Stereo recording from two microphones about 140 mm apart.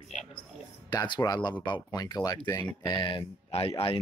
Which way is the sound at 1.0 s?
30° left (ahead or behind).